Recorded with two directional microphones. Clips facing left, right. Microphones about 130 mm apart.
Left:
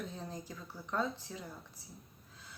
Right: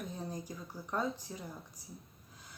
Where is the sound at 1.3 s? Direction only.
30° right (ahead or behind).